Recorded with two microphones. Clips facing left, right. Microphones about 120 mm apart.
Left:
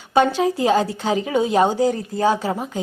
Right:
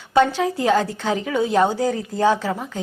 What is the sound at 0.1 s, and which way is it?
A woman's voice, 15° left (ahead or behind).